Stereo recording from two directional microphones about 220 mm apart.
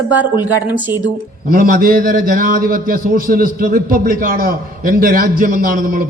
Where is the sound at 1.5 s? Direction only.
40° right (ahead or behind).